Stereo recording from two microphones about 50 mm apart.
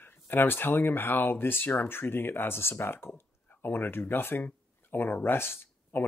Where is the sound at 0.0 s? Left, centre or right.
Left.